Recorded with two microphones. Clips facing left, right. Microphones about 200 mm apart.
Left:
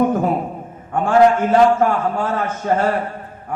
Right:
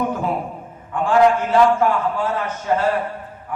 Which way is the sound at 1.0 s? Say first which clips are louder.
Left 2 dB; 50° left (ahead or behind).